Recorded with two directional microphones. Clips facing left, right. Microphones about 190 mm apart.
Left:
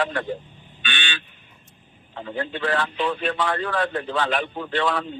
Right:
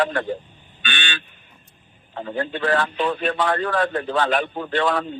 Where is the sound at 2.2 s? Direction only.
45° right (ahead or behind).